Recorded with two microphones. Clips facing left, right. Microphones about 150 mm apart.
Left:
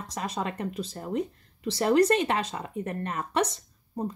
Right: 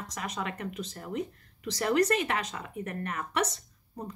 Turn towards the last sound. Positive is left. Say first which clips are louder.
# left 8 dB
turn(degrees=30)  # may be behind; listen again after turning